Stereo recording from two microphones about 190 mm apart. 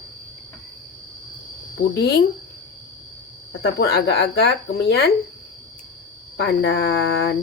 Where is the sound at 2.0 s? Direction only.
60° left (ahead or behind).